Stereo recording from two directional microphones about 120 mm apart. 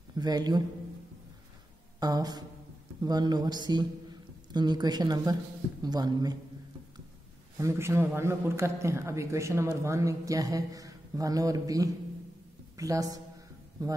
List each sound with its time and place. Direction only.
0.1 s a man's voice: 35° right (ahead or behind)
2.0 s speech: 35° right (ahead or behind)
7.5 s a man's voice: 20° right (ahead or behind)